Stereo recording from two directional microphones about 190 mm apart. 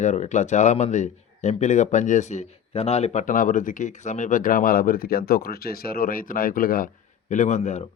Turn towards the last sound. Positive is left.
turn(degrees=40)  # may be behind; listen again after turning